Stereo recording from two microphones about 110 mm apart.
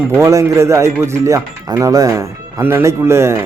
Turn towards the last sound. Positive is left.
turn(degrees=-25)  # may be behind; listen again after turning